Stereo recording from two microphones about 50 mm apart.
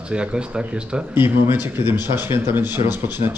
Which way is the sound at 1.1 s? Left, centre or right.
Right.